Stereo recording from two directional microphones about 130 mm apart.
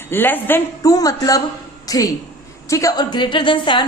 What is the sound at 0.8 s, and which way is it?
A woman's voice, 25° left (ahead or behind).